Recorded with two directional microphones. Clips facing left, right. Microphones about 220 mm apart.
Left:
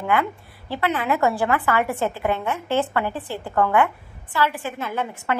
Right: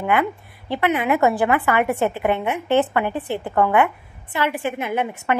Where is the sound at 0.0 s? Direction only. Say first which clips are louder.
Right 2 dB; 20° right (ahead or behind).